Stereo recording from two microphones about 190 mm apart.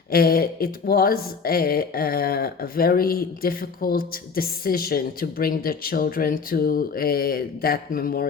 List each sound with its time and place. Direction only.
0.1 s speech: 55° left (ahead or behind)